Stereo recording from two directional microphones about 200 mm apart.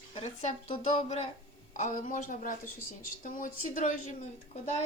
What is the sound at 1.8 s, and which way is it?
A woman's voice, 40° left (ahead or behind).